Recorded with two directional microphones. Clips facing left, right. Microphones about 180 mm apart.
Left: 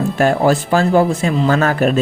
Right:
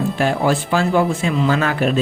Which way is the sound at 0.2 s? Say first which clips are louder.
Left 5 dB; 45° left (ahead or behind).